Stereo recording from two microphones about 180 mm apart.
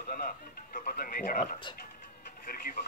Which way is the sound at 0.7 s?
50° left (ahead or behind).